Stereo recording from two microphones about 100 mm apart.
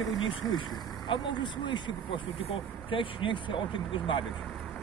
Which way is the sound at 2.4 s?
65° left (ahead or behind).